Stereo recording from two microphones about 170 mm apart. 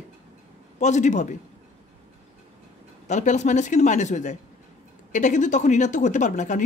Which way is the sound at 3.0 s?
45° left (ahead or behind).